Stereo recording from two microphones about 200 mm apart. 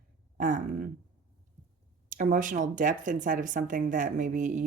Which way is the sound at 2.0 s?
40° right (ahead or behind).